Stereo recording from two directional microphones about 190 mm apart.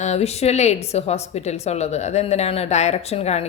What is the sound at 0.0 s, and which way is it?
Speech, 35° left (ahead or behind).